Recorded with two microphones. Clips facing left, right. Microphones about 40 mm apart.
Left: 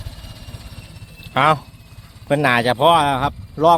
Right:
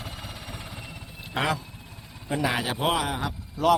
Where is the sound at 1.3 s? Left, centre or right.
Left.